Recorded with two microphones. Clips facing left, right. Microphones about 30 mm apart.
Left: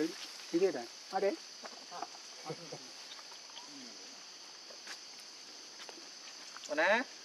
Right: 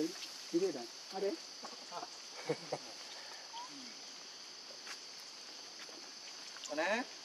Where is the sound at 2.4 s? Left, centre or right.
Right.